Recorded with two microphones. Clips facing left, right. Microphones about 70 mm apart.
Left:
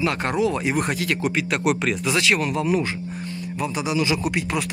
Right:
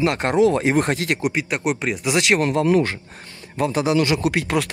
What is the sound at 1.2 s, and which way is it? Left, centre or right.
Speech, centre.